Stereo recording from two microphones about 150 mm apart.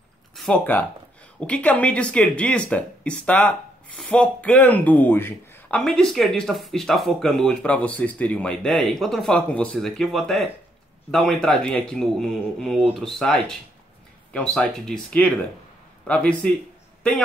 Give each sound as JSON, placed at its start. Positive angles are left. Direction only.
{"t": 0.7, "sound": "speech", "side_deg": 10}
{"t": 5.8, "sound": "speech", "side_deg": 5}